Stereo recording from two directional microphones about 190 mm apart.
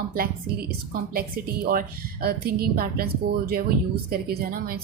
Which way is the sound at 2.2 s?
55° right (ahead or behind).